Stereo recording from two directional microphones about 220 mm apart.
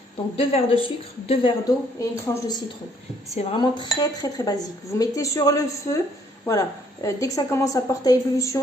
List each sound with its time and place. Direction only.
0.3 s a woman's voice: 25° left (ahead or behind)